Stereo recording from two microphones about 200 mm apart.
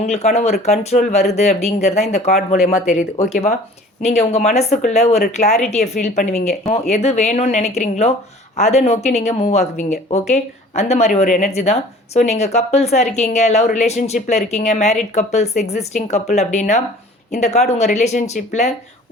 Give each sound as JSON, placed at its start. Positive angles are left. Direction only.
{"t": 0.0, "sound": "a woman's voice", "side_deg": 35}